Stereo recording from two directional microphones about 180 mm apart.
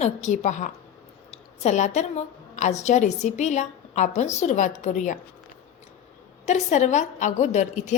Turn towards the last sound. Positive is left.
turn(degrees=40)  # may be behind; listen again after turning